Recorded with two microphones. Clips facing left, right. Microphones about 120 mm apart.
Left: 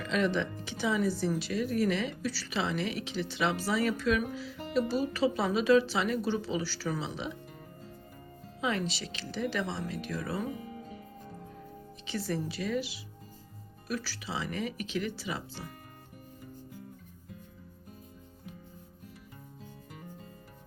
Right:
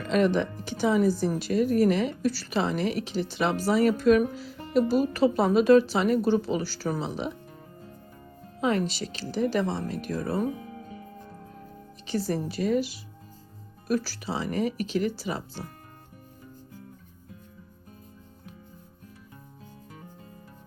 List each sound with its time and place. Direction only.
0.0 s speech: 45° right (ahead or behind)
8.6 s speech: 45° right (ahead or behind)
12.0 s speech: 40° right (ahead or behind)